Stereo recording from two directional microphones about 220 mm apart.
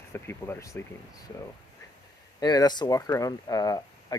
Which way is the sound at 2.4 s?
20° left (ahead or behind).